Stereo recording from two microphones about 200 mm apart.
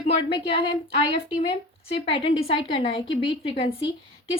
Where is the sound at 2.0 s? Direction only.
25° left (ahead or behind).